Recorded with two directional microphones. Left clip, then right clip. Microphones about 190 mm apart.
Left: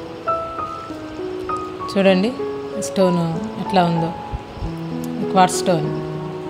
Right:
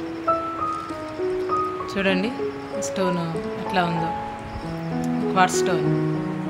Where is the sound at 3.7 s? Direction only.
20° left (ahead or behind).